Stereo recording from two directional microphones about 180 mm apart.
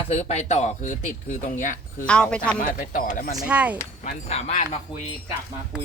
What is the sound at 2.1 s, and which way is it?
Speech, 5° left (ahead or behind).